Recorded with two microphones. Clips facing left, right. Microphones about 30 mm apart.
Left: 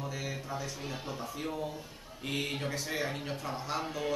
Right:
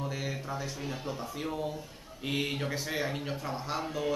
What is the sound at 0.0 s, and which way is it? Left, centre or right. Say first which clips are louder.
A woman's voice: right 2 dB; centre.